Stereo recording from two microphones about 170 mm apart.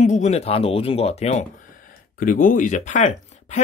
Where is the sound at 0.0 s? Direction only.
45° left (ahead or behind).